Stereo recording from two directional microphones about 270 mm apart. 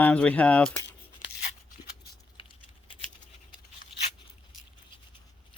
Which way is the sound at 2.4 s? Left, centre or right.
Centre.